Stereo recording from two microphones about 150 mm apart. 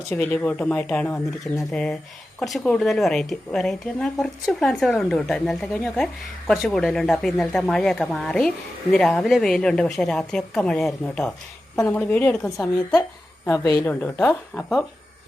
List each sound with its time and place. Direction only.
0.1 s speech: 10° left (ahead or behind)
13.0 s speech: 20° left (ahead or behind); by 14.8 s centre (ahead or behind)